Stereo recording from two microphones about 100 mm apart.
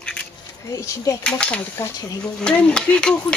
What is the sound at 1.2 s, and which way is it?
Speech, 10° left (ahead or behind).